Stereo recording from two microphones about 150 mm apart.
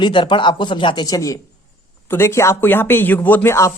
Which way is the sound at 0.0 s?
30° left (ahead or behind).